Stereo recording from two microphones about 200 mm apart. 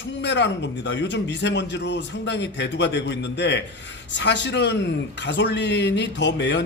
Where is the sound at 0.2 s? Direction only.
60° left (ahead or behind).